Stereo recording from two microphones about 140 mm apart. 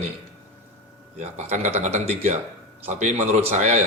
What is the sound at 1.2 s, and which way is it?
Speech, 55° right (ahead or behind).